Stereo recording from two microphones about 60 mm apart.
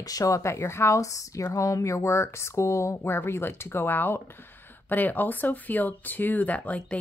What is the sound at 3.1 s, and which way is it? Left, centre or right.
Speech, left.